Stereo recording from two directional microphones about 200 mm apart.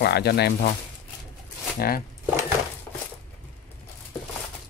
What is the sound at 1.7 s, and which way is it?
Speech, 45° left (ahead or behind).